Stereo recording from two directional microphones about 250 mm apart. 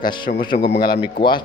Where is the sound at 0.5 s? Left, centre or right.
Left.